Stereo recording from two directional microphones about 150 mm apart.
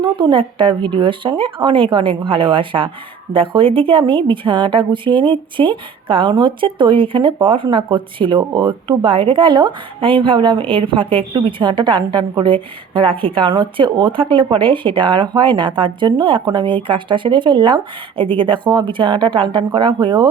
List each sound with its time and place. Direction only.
0.0 s speech: 35° right (ahead or behind)